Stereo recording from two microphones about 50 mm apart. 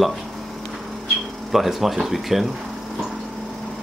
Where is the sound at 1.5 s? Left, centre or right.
Centre.